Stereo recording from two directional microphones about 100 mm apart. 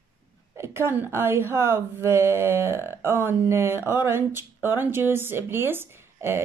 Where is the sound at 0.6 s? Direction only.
25° right (ahead or behind).